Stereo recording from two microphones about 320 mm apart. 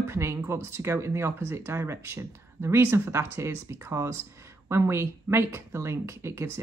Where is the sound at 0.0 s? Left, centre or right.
Centre.